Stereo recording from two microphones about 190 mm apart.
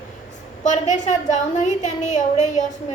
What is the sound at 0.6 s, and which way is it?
A woman's voice, 40° left (ahead or behind).